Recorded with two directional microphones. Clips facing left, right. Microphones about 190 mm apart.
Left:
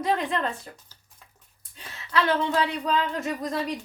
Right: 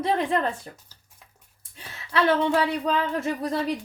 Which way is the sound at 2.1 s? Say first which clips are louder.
Right 3 dB; 30° right (ahead or behind).